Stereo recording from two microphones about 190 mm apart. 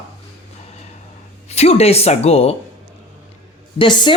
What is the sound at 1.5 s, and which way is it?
Speech, 35° left (ahead or behind).